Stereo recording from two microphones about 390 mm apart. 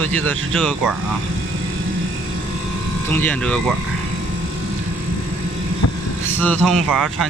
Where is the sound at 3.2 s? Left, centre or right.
Centre.